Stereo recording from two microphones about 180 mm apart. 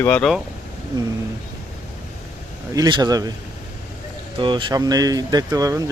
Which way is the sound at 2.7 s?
20° right (ahead or behind).